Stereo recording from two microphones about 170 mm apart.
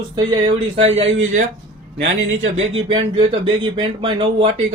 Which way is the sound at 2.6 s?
30° right (ahead or behind).